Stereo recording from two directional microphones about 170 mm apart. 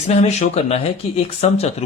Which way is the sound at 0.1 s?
40° left (ahead or behind).